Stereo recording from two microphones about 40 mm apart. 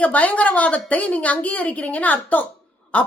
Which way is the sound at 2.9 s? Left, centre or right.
Left.